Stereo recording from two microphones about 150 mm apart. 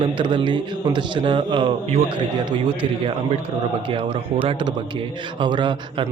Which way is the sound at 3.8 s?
35° right (ahead or behind).